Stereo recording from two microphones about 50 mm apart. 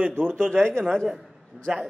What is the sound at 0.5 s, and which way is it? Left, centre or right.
Speech, centre.